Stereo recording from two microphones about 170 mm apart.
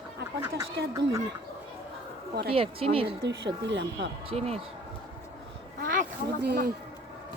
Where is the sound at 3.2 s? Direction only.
90° right.